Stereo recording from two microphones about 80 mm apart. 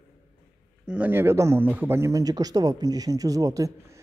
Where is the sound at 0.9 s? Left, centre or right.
Right.